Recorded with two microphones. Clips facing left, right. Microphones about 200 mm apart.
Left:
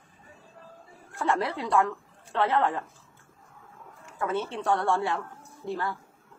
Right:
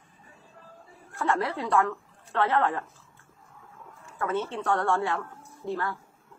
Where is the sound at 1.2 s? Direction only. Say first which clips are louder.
Even; 15° left (ahead or behind).